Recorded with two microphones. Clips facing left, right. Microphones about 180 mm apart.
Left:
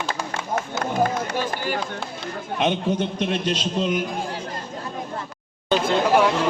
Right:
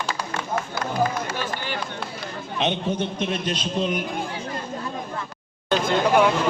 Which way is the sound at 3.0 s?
35° left (ahead or behind).